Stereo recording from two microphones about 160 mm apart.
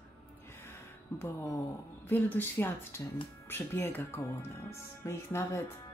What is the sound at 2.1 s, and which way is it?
Speech, 10° left (ahead or behind).